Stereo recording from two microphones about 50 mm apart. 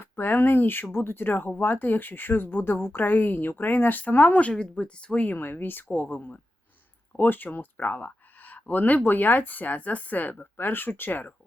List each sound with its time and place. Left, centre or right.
0.0 s speech: left
5.2 s speech: left